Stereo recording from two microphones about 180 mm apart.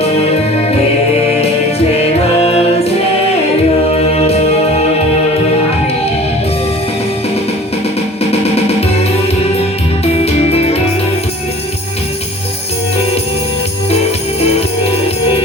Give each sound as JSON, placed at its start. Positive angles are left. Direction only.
{"t": 2.0, "sound": "music", "side_deg": 35}
{"t": 3.9, "sound": "music", "side_deg": 35}
{"t": 8.3, "sound": "music", "side_deg": 35}